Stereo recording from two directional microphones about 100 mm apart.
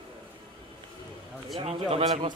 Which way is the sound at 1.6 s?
75° right (ahead or behind).